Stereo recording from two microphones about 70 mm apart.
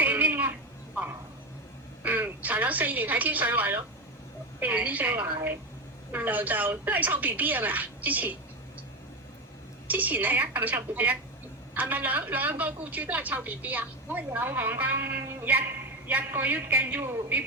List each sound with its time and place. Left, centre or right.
0.0 s a sound: right
2.0 s a woman's voice: right
5.2 s a woman's voice: right
6.1 s a woman's voice: right
9.8 s a woman's voice: right